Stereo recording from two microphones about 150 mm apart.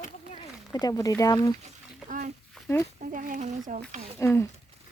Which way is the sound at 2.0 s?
55° right (ahead or behind).